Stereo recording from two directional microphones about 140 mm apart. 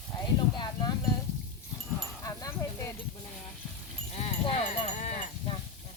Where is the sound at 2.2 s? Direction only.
25° left (ahead or behind).